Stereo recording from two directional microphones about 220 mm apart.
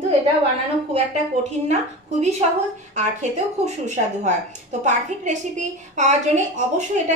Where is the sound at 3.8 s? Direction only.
35° right (ahead or behind).